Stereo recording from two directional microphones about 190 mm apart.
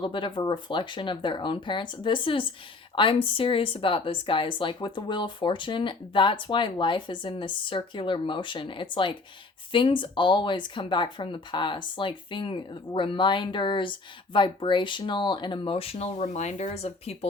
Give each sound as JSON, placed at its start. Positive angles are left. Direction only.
{"t": 0.0, "sound": "speech", "side_deg": 25}